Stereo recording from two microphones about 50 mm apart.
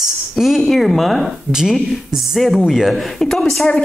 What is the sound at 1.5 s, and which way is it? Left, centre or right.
A man's voice, centre.